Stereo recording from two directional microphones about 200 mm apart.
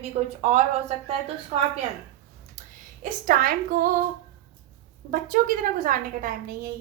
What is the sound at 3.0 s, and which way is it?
Speech, 45° right (ahead or behind).